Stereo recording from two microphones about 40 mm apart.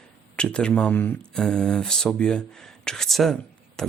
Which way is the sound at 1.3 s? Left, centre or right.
Centre.